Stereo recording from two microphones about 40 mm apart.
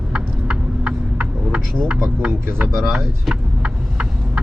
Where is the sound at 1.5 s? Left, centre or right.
Right.